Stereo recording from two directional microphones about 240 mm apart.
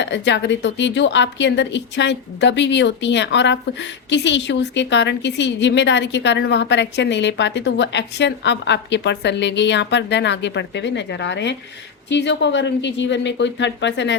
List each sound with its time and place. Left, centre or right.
0.0 s a woman's voice: left